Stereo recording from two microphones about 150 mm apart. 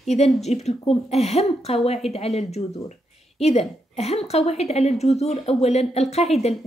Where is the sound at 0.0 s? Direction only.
45° left (ahead or behind).